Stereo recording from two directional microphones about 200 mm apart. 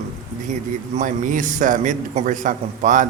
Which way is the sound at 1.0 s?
40° right (ahead or behind).